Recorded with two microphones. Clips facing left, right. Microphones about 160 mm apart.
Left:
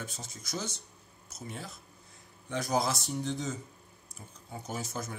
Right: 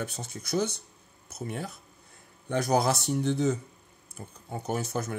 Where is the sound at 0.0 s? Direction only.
65° right (ahead or behind).